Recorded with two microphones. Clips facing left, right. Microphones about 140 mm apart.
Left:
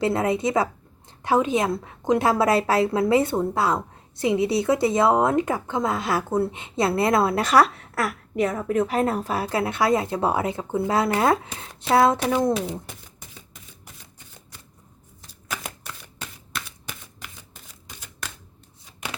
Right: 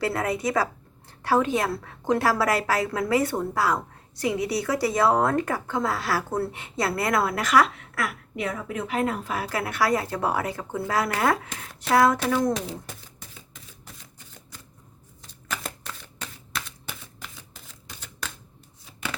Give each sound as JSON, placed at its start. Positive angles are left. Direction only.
{"t": 0.0, "sound": "a woman's voice", "side_deg": 25}
{"t": 15.4, "sound": "shuffling cards", "side_deg": 10}
{"t": 17.2, "sound": "shuffling cards", "side_deg": 5}